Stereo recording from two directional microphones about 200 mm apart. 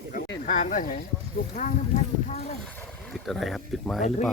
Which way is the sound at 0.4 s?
40° left (ahead or behind).